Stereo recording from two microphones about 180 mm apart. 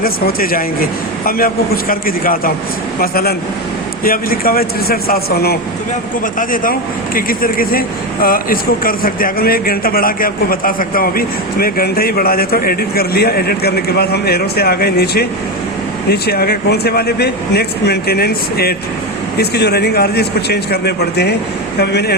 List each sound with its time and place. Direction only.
0.0 s speech: 55° left (ahead or behind)